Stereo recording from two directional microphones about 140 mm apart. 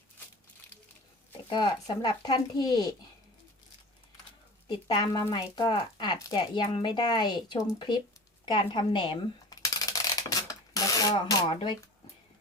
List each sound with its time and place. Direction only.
1.5 s speech: 35° left (ahead or behind)
4.7 s speech: 30° left (ahead or behind)
8.4 s a sound: 35° left (ahead or behind)